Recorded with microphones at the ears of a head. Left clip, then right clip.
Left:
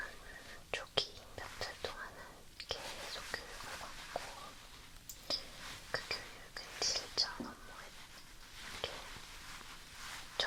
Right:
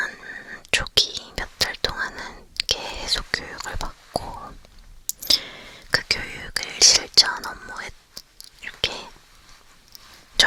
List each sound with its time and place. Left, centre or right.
0.0 s whispering: right